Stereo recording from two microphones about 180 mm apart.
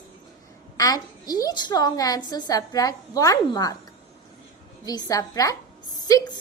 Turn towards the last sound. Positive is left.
turn(degrees=20)  # may be behind; listen again after turning